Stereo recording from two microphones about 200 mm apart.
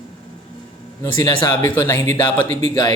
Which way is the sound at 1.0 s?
15° left (ahead or behind).